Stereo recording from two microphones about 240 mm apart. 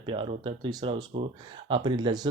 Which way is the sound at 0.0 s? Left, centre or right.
Right.